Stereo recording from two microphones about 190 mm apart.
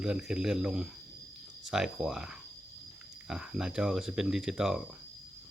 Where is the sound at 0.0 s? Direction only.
5° right (ahead or behind).